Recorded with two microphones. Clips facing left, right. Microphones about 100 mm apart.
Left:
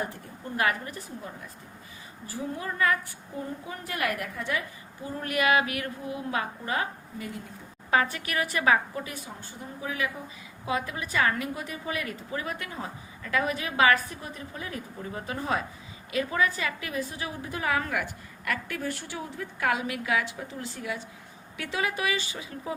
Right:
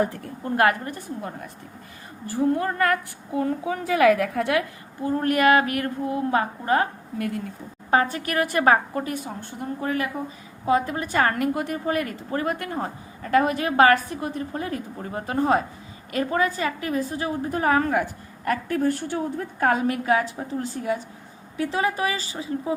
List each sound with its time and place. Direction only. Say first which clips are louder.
0.4 s speech: right 7 dB; 55° right (ahead or behind)
4.2 s a woman's voice: right 9 dB; 85° right
5.0 s a woman's voice: right 7 dB; 45° right (ahead or behind)
7.9 s a woman's voice: right 4 dB; 40° right (ahead or behind)
10.7 s a woman's voice: right 8 dB; 40° right (ahead or behind)